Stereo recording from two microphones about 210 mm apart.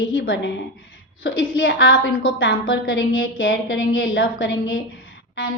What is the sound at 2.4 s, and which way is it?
A woman's voice, 55° left (ahead or behind).